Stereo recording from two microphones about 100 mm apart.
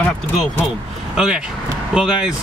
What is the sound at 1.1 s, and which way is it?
Speech, 5° right (ahead or behind).